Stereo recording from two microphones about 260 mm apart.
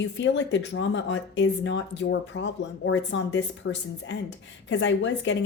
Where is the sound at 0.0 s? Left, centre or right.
Left.